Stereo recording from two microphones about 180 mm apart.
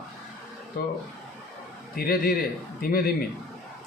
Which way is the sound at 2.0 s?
55° left (ahead or behind).